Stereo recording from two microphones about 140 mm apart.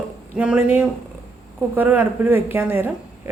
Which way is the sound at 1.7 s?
15° right (ahead or behind).